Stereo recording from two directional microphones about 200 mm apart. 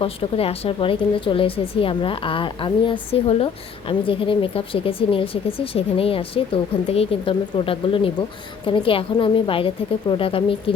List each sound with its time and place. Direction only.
0.0 s a woman's voice: 30° left (ahead or behind)